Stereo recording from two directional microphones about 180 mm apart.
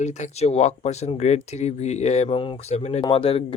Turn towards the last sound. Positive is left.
turn(degrees=30)  # may be behind; listen again after turning